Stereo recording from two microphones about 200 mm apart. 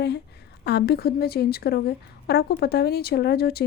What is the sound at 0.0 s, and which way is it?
A woman's voice, 55° left (ahead or behind).